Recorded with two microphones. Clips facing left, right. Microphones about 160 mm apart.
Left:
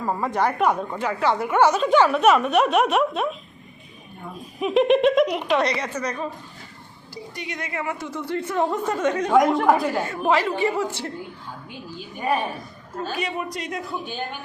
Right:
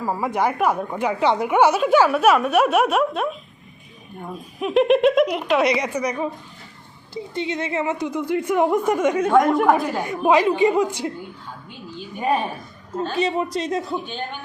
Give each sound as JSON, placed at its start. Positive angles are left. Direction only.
{"t": 0.0, "sound": "a woman's voice", "side_deg": -5}
{"t": 4.6, "sound": "a woman's voice", "side_deg": 0}
{"t": 5.6, "sound": "a woman's voice", "side_deg": -15}
{"t": 7.1, "sound": "a woman's voice", "side_deg": -25}
{"t": 9.3, "sound": "a woman's voice", "side_deg": 0}
{"t": 9.9, "sound": "a woman's voice", "side_deg": -15}
{"t": 13.1, "sound": "a woman's voice", "side_deg": -25}